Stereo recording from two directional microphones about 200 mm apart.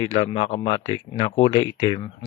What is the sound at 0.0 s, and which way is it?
Speech, 25° left (ahead or behind).